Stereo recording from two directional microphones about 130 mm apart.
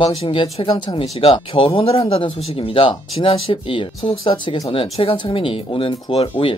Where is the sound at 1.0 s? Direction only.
45° left (ahead or behind).